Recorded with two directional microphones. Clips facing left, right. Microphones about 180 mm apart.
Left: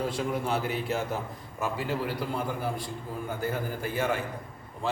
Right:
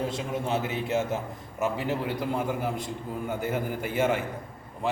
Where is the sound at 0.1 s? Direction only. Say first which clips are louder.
Even; 20° right (ahead or behind).